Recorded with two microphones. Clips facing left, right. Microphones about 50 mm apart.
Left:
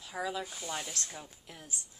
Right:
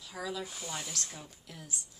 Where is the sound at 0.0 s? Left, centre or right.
Left.